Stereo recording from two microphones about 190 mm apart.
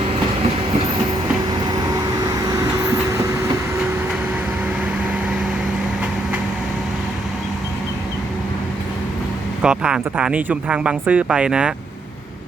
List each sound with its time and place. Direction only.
9.6 s speech: 5° right (ahead or behind)